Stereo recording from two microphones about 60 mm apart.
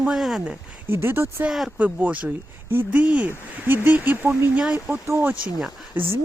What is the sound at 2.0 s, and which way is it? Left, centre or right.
Speech, right.